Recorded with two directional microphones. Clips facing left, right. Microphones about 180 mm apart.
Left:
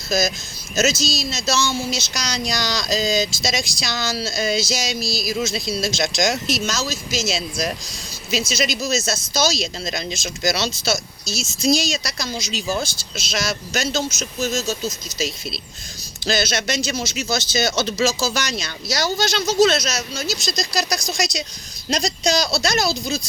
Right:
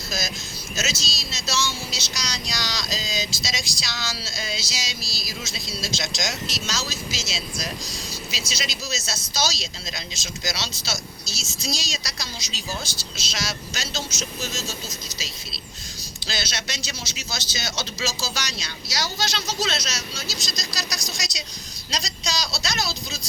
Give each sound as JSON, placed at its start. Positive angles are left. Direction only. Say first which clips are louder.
{"t": 0.8, "sound": "speech", "louder": "left 11 dB", "side_deg": 45}
{"t": 16.2, "sound": "speech", "louder": "left 11 dB", "side_deg": 50}